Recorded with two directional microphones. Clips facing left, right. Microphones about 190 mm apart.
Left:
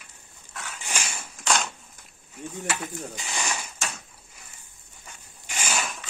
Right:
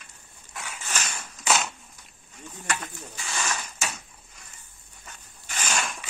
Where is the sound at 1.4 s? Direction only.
5° right (ahead or behind).